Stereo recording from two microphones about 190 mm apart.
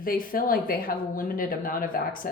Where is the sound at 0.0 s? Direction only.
50° left (ahead or behind).